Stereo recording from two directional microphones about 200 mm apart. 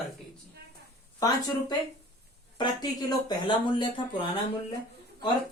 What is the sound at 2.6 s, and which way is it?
Speech, 20° left (ahead or behind).